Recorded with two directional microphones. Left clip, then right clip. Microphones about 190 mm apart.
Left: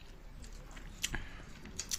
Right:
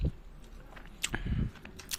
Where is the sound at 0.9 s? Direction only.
45° right (ahead or behind).